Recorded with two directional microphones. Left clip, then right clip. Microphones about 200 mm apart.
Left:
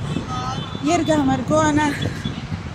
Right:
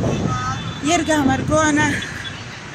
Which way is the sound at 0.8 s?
5° left (ahead or behind).